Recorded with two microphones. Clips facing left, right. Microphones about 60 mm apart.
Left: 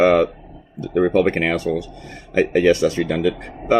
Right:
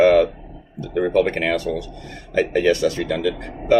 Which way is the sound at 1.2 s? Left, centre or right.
Left.